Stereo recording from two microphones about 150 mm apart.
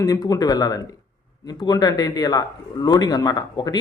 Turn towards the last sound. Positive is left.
turn(degrees=25)  # may be behind; listen again after turning